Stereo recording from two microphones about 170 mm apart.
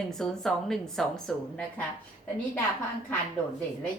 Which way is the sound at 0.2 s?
Centre (ahead or behind).